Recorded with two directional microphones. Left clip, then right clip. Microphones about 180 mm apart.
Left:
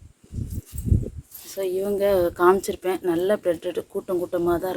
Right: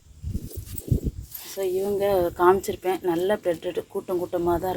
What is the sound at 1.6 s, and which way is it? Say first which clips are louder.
Speech: left 1 dB; 30° left (ahead or behind).